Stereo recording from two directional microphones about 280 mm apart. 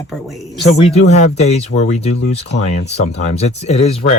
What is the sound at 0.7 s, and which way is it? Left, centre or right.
Speech, left.